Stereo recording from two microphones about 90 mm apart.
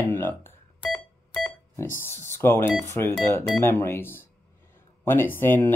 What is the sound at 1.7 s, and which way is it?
Speech, 25° left (ahead or behind).